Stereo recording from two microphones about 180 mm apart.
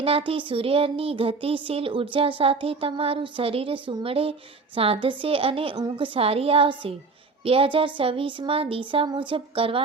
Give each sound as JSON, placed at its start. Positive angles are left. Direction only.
{"t": 0.0, "sound": "speech", "side_deg": -30}